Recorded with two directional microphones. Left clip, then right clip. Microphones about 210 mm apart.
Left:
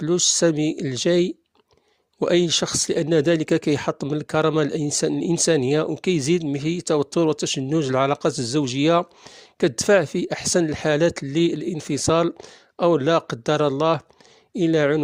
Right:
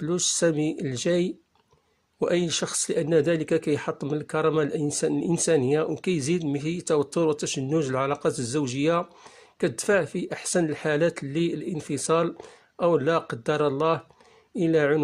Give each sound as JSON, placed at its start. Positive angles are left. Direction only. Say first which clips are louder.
{"t": 0.0, "sound": "speech", "louder": "left 5 dB", "side_deg": 35}